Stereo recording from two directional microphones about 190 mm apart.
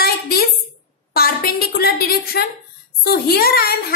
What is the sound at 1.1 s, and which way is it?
A woman's voice, 55° left (ahead or behind).